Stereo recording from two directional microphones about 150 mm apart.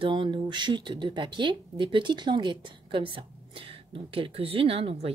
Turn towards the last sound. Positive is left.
turn(degrees=-40)  # may be behind; listen again after turning